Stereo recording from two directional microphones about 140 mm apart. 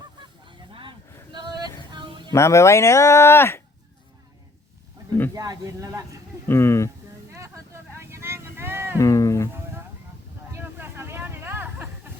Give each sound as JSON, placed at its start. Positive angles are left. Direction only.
{"t": 0.2, "sound": "a sound", "side_deg": -35}
{"t": 2.3, "sound": "speech", "side_deg": 20}
{"t": 5.3, "sound": "speech", "side_deg": -25}
{"t": 6.5, "sound": "speech", "side_deg": 15}
{"t": 7.3, "sound": "vehicle", "side_deg": -20}
{"t": 9.0, "sound": "speech", "side_deg": 25}
{"t": 10.5, "sound": "vehicle", "side_deg": -15}